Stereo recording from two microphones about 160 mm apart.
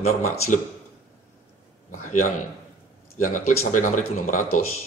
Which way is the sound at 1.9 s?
55° left (ahead or behind).